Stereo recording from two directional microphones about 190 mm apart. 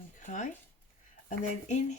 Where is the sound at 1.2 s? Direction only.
40° left (ahead or behind).